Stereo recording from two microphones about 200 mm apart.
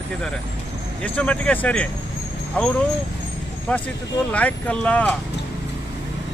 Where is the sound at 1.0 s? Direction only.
5° left (ahead or behind).